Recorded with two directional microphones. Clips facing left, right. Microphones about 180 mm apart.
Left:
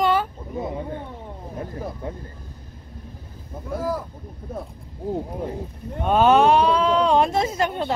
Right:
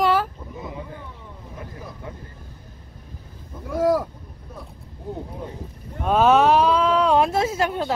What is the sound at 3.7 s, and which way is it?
Speech, 85° right.